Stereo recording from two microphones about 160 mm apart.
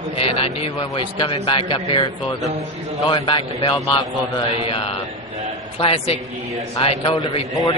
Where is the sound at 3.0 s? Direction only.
30° left (ahead or behind).